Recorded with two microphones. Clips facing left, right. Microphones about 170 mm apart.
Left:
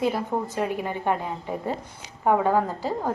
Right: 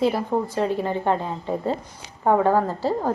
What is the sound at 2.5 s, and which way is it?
Speech, 15° left (ahead or behind).